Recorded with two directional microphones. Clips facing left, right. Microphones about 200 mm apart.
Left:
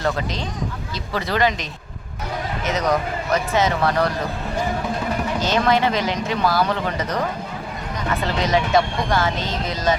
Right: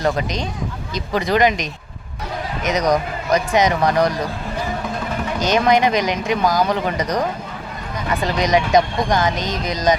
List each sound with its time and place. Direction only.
0.0 s speech: 15° right (ahead or behind)
2.6 s speech: 15° right (ahead or behind)
5.4 s speech: 15° right (ahead or behind)